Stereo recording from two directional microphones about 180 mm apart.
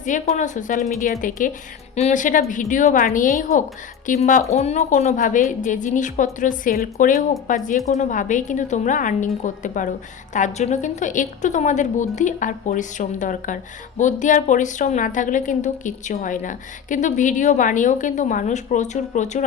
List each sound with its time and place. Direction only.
0.0 s a woman's voice: 45° left (ahead or behind)